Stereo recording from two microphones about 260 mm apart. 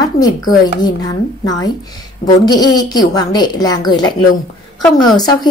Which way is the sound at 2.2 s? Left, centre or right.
Centre.